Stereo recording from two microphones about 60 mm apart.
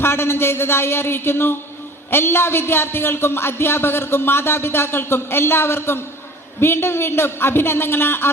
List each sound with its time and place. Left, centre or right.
0.0 s a man's voice: left